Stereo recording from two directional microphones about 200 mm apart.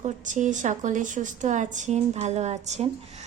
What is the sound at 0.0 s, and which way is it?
A woman's voice, 40° right (ahead or behind).